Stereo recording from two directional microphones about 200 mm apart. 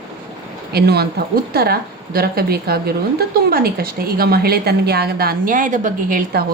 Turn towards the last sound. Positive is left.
turn(degrees=-45)  # may be behind; listen again after turning